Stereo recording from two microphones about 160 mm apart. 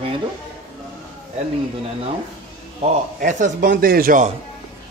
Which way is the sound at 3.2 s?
55° right (ahead or behind).